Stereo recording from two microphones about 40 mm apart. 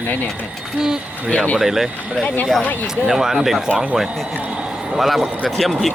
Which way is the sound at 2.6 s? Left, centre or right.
Left.